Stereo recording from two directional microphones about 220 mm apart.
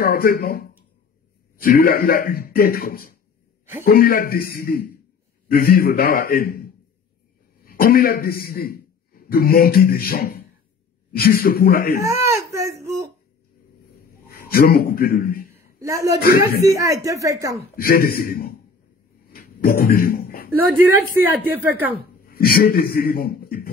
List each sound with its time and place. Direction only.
0.0 s a man's voice: 40° left (ahead or behind)
12.0 s speech: 15° right (ahead or behind)
13.9 s a sound: 45° left (ahead or behind)
14.7 s a man's voice: 40° left (ahead or behind)
15.5 s a sound: 15° right (ahead or behind)
16.2 s speech: 45° left (ahead or behind)
16.6 s speech: 15° right (ahead or behind)
17.7 s speech: 40° left (ahead or behind)
19.2 s a sound: 45° left (ahead or behind)
20.5 s speech: 10° right (ahead or behind)
22.2 s a man's voice: 40° left (ahead or behind)